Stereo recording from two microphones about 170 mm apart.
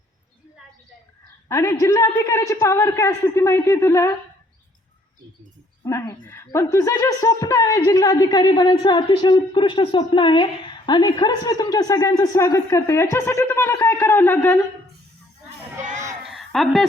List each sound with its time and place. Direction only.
1.5 s a man's voice: 15° left (ahead or behind)
5.8 s a woman's voice: 15° left (ahead or behind)
16.2 s a sound: centre (ahead or behind)